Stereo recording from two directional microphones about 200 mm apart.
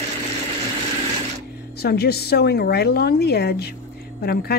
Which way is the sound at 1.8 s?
50° left (ahead or behind).